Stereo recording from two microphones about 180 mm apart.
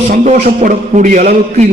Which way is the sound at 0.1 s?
40° right (ahead or behind).